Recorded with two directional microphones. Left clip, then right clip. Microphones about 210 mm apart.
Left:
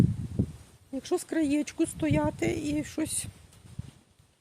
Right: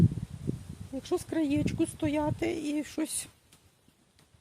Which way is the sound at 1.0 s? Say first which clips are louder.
Left 2 dB; 15° left (ahead or behind).